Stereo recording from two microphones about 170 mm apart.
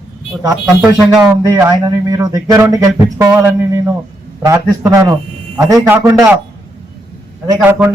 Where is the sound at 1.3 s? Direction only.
20° right (ahead or behind).